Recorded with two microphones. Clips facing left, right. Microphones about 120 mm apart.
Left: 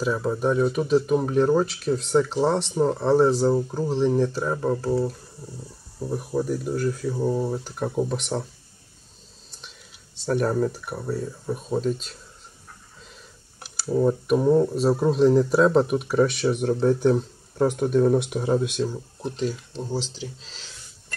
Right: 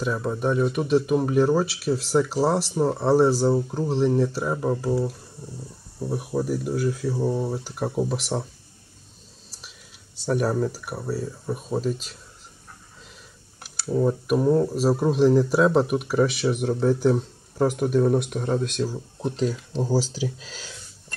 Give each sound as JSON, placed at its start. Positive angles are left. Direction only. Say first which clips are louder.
{"t": 0.0, "sound": "speech", "louder": "left 2 dB", "side_deg": 0}
{"t": 10.1, "sound": "speech", "louder": "even", "side_deg": -5}
{"t": 13.6, "sound": "speech", "louder": "left 1 dB", "side_deg": 0}
{"t": 19.7, "sound": "speech", "louder": "right 6 dB", "side_deg": -35}
{"t": 20.0, "sound": "speech", "louder": "right 6 dB", "side_deg": -5}